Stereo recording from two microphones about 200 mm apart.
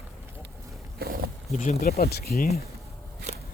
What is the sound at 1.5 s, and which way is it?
Speech, 45° left (ahead or behind).